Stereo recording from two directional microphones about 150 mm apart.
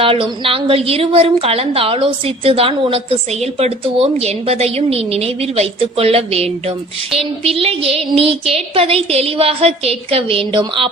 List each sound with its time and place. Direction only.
0.0 s a woman's voice: 35° right (ahead or behind)